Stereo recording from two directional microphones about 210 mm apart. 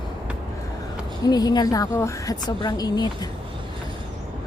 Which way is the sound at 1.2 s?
20° left (ahead or behind).